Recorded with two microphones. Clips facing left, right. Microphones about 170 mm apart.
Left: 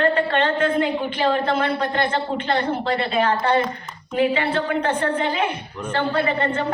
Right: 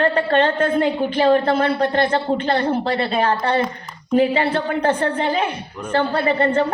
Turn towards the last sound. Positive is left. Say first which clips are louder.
# right 4 dB
turn(degrees=-40)  # may be behind; listen again after turning